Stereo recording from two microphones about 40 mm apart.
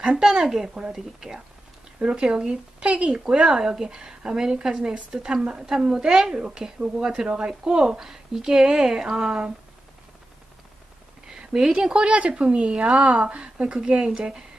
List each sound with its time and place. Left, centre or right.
0.0 s a woman's voice: centre
2.0 s speech: right
2.2 s a woman's voice: centre
2.8 s a woman's voice: right
11.2 s a sound: centre
11.9 s a woman's voice: right